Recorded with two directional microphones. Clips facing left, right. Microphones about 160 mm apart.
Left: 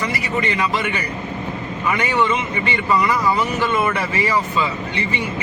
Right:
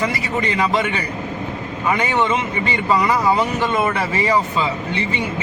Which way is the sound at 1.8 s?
25° right (ahead or behind).